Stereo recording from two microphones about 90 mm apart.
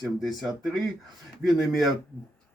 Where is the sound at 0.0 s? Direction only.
Centre (ahead or behind).